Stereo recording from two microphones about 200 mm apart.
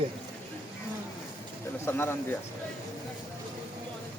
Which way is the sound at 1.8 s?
10° left (ahead or behind).